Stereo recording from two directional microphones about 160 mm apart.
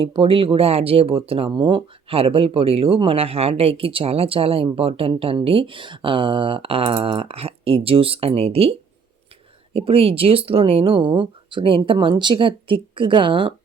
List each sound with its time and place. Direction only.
0.0 s speech: 35° right (ahead or behind)
9.7 s speech: 35° right (ahead or behind)